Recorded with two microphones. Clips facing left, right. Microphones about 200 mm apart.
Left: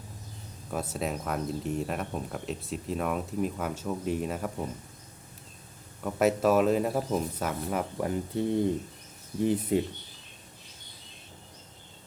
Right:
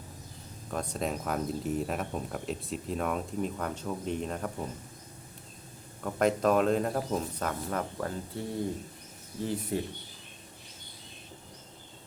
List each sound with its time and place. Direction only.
0.7 s speech: 5° left (ahead or behind)
6.0 s speech: 5° left (ahead or behind)